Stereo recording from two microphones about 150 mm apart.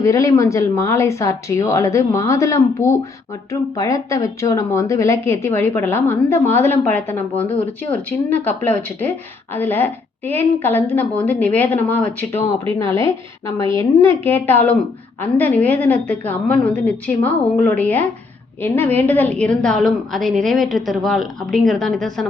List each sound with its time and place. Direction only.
0.0 s a woman's voice: 20° left (ahead or behind); by 22.3 s 5° left (ahead or behind)